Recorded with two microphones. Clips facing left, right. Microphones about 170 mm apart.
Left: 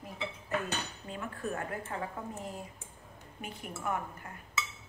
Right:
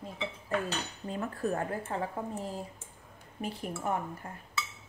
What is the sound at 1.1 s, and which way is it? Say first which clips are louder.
A woman's voice: right 5 dB; 35° right (ahead or behind).